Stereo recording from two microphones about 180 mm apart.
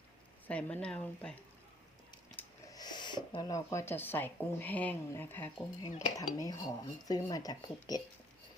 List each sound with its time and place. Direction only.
0.4 s speech: 5° left (ahead or behind)
2.7 s speech: 25° left (ahead or behind)